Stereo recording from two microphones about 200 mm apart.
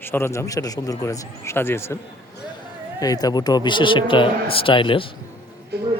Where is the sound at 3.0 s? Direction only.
20° left (ahead or behind).